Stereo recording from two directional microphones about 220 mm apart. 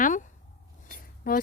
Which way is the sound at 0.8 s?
40° left (ahead or behind).